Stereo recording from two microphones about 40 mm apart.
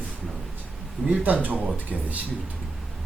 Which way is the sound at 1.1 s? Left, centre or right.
Right.